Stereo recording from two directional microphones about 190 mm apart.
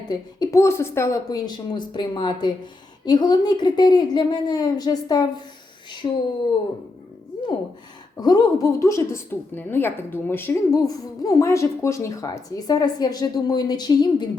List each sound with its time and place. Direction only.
0.1 s speech: 20° left (ahead or behind)
8.1 s a woman's voice: 20° left (ahead or behind)